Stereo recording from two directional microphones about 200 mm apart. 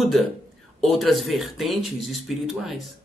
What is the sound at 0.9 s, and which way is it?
Speech, centre (ahead or behind).